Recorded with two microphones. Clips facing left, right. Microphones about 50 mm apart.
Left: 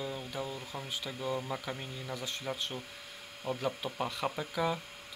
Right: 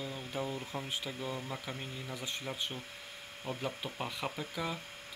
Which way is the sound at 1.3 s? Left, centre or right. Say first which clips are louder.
Left 4 dB; centre.